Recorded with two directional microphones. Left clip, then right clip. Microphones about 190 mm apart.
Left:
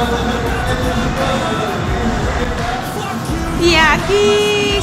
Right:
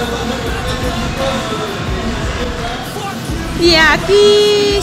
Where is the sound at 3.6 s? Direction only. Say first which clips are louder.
Right 2 dB; 15° right (ahead or behind).